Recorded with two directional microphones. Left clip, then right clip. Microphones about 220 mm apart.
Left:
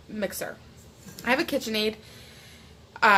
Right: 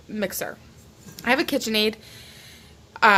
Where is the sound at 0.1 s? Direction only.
40° right (ahead or behind).